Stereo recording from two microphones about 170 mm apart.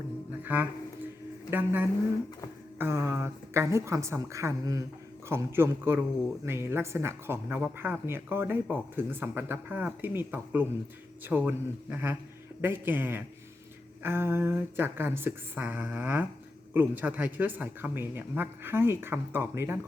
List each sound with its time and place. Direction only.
0.4 s speech: 10° right (ahead or behind)